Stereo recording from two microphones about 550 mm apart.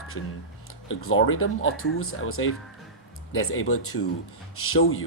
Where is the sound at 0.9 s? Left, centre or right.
Left.